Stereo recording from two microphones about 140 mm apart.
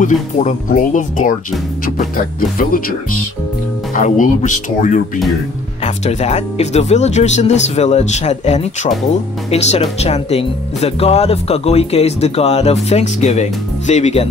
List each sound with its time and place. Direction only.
0.0 s speech: 60° left (ahead or behind)
2.6 s speech: 90° left
3.9 s speech: 70° left (ahead or behind); by 14.3 s 50° left (ahead or behind)